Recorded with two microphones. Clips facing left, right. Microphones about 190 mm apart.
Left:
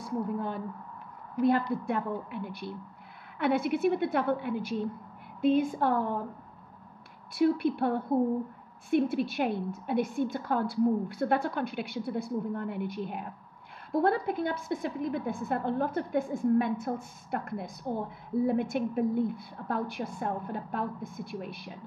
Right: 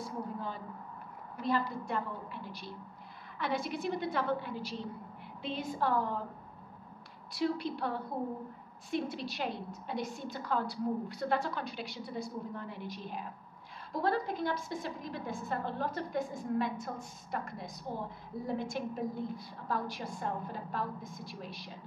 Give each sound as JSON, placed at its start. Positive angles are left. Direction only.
{"t": 0.0, "sound": "a woman's voice", "side_deg": 60}
{"t": 1.9, "sound": "a woman's voice", "side_deg": 60}
{"t": 7.3, "sound": "a woman's voice", "side_deg": 55}